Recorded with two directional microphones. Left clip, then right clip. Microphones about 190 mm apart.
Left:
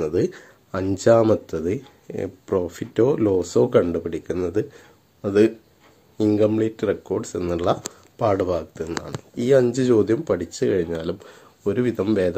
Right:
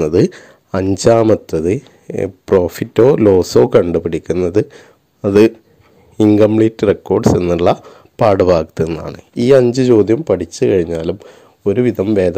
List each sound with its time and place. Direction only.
0.0 s speech: 45° right (ahead or behind)